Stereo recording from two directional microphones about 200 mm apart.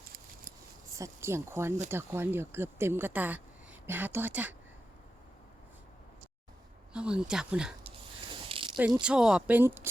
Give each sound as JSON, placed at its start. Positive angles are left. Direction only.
{"t": 0.9, "sound": "speech", "side_deg": -15}
{"t": 6.9, "sound": "speech", "side_deg": -5}
{"t": 7.9, "sound": "snake", "side_deg": -25}
{"t": 9.0, "sound": "speech", "side_deg": -5}